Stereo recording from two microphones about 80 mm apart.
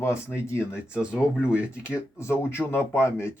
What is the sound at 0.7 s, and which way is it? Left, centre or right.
Speech, centre.